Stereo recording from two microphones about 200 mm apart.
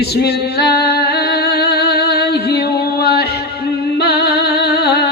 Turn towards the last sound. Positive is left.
turn(degrees=55)  # may be behind; listen again after turning